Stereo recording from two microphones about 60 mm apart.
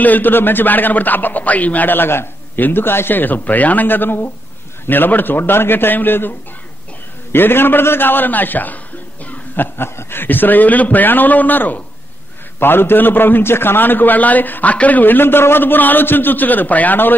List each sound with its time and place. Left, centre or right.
0.0 s a man's voice: left
7.3 s a man's voice: left
9.2 s a sound: left
9.8 s a man's voice: left